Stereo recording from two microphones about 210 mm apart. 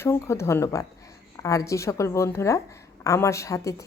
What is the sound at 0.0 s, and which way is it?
A woman's voice, 10° left (ahead or behind).